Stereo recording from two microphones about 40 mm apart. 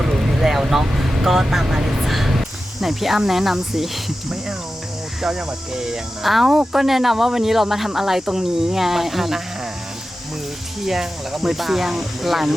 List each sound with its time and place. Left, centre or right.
0.0 s speech: centre
10.8 s speech: centre